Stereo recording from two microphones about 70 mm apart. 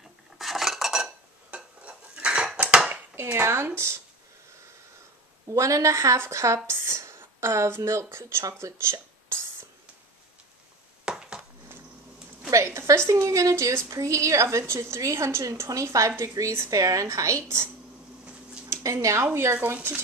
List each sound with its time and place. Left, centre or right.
0.4 s cutlery: centre
1.5 s dishes: centre
2.9 s speech: right
5.5 s a woman's voice: right
11.1 s a sound: centre
12.6 s a sound: right
13.2 s a woman's voice: right
18.7 s speech: right
19.2 s a woman's voice: right